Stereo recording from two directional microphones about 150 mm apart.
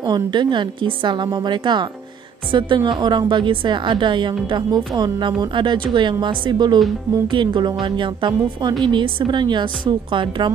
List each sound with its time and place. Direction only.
0.0 s a woman's voice: 30° right (ahead or behind)